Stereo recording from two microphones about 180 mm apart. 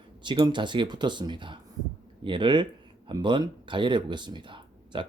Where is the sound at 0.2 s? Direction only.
25° right (ahead or behind).